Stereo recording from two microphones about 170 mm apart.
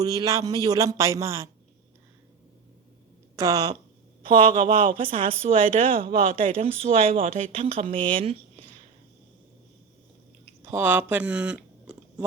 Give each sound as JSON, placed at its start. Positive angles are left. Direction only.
{"t": 0.0, "sound": "speech", "side_deg": -20}
{"t": 3.3, "sound": "speech", "side_deg": -20}
{"t": 4.2, "sound": "speech", "side_deg": -35}
{"t": 10.6, "sound": "speech", "side_deg": -15}